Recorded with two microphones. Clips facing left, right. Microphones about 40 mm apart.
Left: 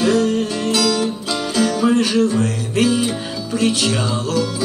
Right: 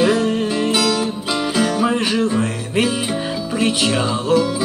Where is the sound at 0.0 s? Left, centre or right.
Centre.